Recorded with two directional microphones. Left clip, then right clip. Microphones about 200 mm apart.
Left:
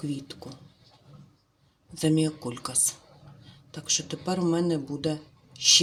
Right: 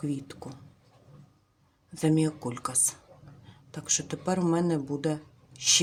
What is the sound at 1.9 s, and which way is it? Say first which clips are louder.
Speech: left 1 dB; 10° right (ahead or behind).